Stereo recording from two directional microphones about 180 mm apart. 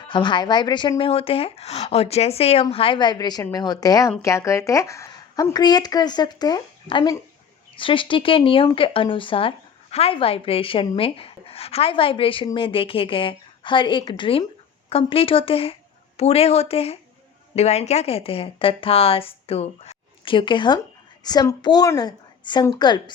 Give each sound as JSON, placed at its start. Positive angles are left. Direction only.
{"t": 0.1, "sound": "speech", "side_deg": 25}